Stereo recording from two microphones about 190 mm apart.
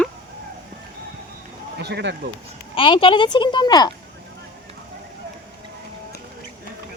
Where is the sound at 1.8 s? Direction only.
60° right (ahead or behind).